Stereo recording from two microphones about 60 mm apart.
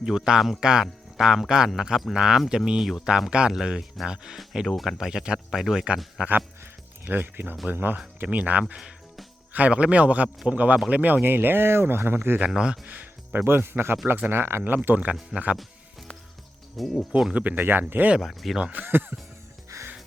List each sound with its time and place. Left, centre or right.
0.0 s speech: centre
4.6 s speech: centre
7.1 s a man's voice: right
12.5 s speech: centre
13.4 s speech: right
15.3 s speech: centre
16.7 s speech: centre
17.3 s speech: right
18.2 s speech: centre
18.7 s speech: right
19.7 s music: right